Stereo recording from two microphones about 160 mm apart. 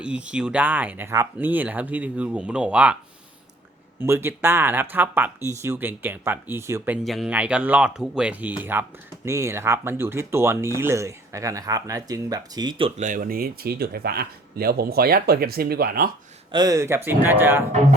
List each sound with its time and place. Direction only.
0.0 s speech: 5° right (ahead or behind)
4.0 s speech: 15° right (ahead or behind)
7.0 s speech: centre (ahead or behind); by 12.9 s 25° right (ahead or behind)
13.0 s speech: 55° right (ahead or behind)
16.5 s speech: 25° right (ahead or behind)